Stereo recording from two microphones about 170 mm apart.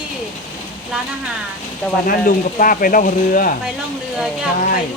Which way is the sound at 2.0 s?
55° left (ahead or behind).